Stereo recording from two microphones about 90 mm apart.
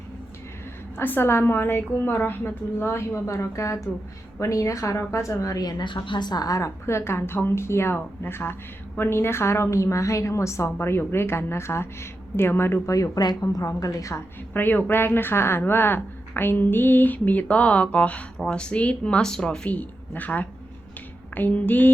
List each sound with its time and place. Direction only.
0.9 s a woman's voice: 25° left (ahead or behind)
14.5 s a woman's voice: 20° left (ahead or behind)